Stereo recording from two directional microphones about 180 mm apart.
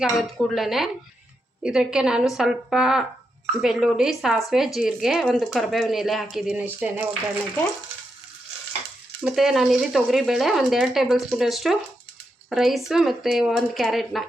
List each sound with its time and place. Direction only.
0.0 s speech: centre (ahead or behind)
9.2 s speech: centre (ahead or behind)